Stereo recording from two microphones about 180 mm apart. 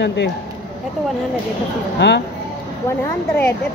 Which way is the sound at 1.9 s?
70° left (ahead or behind).